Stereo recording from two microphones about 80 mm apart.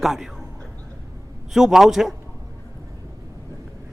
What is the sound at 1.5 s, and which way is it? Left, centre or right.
Speech, centre.